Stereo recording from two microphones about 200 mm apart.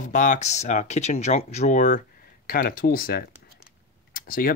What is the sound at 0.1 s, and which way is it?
Speech, 40° left (ahead or behind).